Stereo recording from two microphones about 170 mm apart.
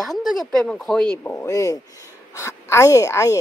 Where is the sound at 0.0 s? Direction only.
Centre (ahead or behind).